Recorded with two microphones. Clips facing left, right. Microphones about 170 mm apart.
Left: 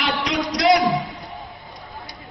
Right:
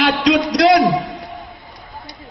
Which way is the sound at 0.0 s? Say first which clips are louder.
Right 8 dB; 85° right.